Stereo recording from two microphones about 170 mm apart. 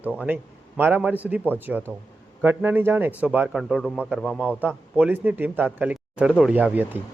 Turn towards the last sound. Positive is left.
turn(degrees=-10)  # may be behind; listen again after turning